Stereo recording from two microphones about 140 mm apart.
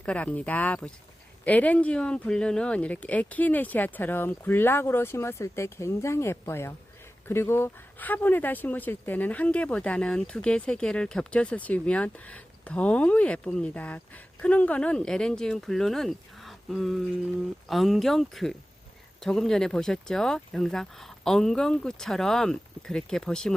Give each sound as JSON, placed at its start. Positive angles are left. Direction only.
{"t": 0.0, "sound": "speech", "side_deg": 10}